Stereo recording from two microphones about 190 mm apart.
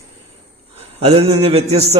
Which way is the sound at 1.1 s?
30° right (ahead or behind).